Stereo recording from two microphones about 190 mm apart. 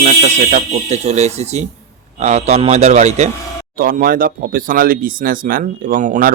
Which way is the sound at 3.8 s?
50° right (ahead or behind).